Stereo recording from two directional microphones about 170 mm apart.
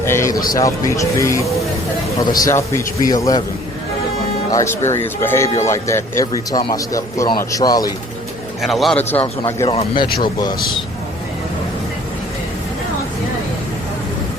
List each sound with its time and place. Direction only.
0.0 s a sound: 15° left (ahead or behind)
0.5 s speech: 20° left (ahead or behind)
4.5 s speech: 15° left (ahead or behind)
8.6 s a man's voice: centre (ahead or behind)
9.6 s speech: 30° left (ahead or behind)